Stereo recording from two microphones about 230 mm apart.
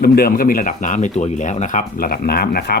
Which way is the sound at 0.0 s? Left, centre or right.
Left.